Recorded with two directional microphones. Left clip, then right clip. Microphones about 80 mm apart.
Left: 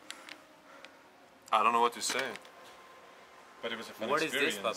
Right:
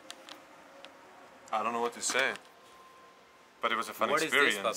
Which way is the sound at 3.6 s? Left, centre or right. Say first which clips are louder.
Right 6 dB; right.